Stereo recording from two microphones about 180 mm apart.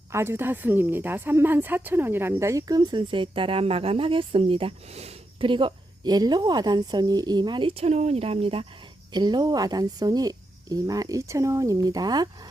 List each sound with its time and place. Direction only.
0.1 s a woman's voice: 15° right (ahead or behind)